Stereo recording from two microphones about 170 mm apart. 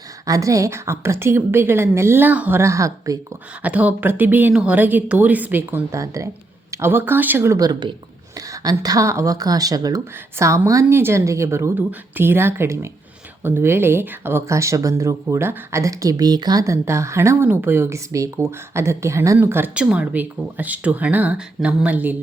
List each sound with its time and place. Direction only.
0.3 s speech: 20° right (ahead or behind)